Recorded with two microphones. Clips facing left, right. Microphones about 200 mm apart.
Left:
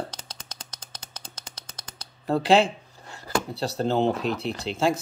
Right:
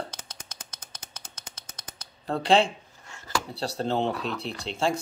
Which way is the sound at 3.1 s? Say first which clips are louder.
Left 5 dB; 35° left (ahead or behind).